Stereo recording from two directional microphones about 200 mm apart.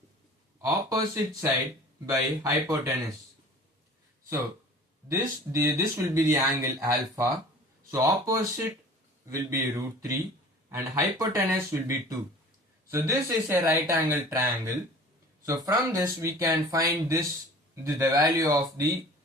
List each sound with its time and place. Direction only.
0.6 s speech: 15° right (ahead or behind)
5.0 s speech: 15° right (ahead or behind)